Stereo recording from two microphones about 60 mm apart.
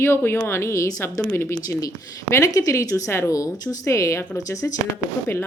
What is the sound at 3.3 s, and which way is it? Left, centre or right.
Speech, left.